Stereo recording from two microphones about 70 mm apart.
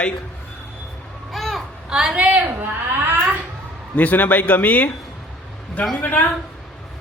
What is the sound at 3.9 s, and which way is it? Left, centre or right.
Speech, left.